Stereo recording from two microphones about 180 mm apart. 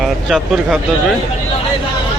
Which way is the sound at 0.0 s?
Centre (ahead or behind).